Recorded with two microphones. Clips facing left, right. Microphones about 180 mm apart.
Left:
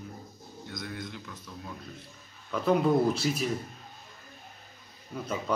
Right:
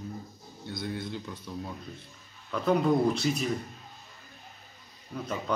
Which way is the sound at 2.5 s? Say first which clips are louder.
Even; centre (ahead or behind).